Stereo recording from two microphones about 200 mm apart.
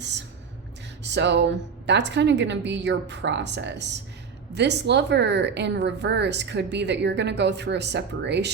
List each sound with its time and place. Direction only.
1.0 s speech: 60° right (ahead or behind)